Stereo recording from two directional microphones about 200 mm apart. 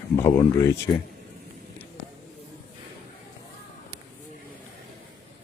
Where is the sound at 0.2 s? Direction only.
15° left (ahead or behind).